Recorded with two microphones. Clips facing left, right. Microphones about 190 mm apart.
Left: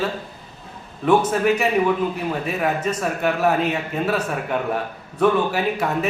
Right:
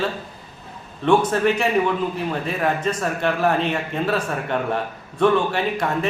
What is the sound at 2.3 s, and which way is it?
A man's voice, 5° left (ahead or behind).